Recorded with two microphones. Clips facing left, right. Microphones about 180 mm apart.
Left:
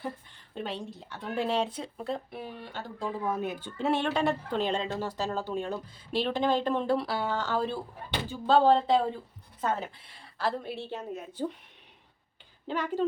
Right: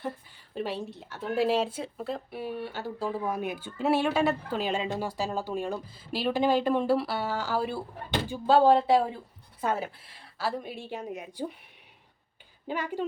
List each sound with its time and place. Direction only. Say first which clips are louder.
0.0 s speech: right 2 dB; 5° right (ahead or behind)
12.6 s speech: left 2 dB; 10° right (ahead or behind)